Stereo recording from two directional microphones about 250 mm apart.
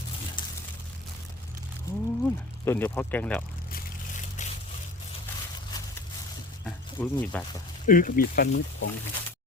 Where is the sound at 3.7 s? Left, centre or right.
Left.